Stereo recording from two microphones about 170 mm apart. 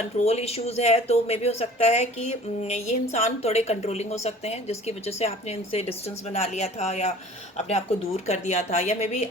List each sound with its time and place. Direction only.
0.3 s a woman's voice: 35° left (ahead or behind)